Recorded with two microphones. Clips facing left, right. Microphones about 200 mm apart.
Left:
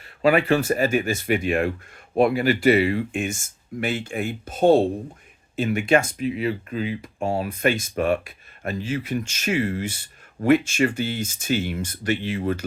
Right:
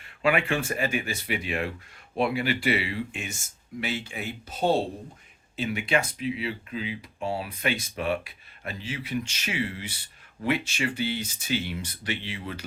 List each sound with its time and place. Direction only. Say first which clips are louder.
0.0 s speech: left 6 dB; 40° left (ahead or behind)